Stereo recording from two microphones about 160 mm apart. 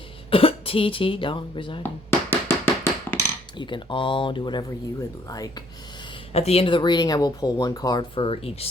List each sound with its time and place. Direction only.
0.3 s speech: 35° left (ahead or behind)
2.3 s tap: 15° left (ahead or behind)
3.6 s speech: 30° left (ahead or behind)
6.3 s speech: 40° left (ahead or behind)